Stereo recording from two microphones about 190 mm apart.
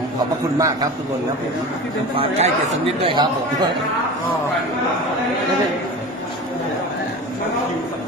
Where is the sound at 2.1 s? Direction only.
30° right (ahead or behind).